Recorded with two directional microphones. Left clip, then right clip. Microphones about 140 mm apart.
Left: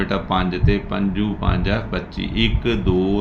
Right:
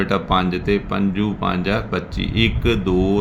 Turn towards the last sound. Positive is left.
turn(degrees=-50)  # may be behind; listen again after turning